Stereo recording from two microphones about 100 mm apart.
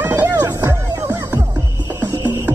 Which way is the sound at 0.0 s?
20° right (ahead or behind).